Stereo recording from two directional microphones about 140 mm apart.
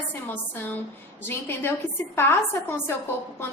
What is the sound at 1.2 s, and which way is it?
A woman's voice, 15° left (ahead or behind).